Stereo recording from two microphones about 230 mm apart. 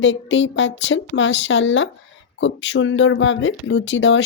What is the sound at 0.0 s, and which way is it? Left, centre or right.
Speech, left.